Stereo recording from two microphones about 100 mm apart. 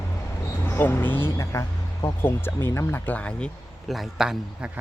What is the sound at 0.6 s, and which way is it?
A man's voice, 20° left (ahead or behind).